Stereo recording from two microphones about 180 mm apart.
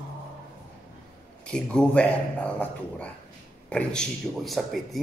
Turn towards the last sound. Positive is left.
turn(degrees=0)  # may be behind; listen again after turning